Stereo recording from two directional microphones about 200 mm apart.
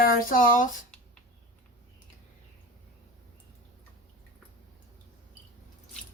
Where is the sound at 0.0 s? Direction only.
45° left (ahead or behind).